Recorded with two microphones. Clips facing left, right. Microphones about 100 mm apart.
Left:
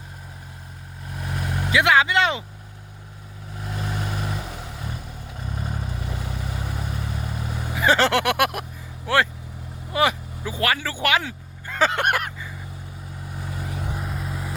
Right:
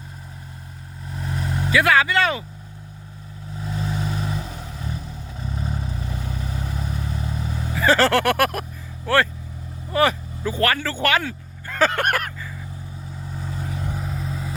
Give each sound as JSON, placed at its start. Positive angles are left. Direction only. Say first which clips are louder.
{"t": 1.1, "sound": "vehicle", "louder": "right 2 dB", "side_deg": 5}
{"t": 1.7, "sound": "speech", "louder": "even", "side_deg": 20}
{"t": 3.6, "sound": "vehicle", "louder": "right 3 dB", "side_deg": 5}
{"t": 9.0, "sound": "speech", "louder": "right 1 dB", "side_deg": 15}
{"t": 13.2, "sound": "vehicle", "louder": "right 2 dB", "side_deg": 10}